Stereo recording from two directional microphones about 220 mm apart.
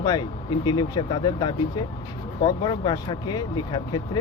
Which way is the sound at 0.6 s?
20° left (ahead or behind).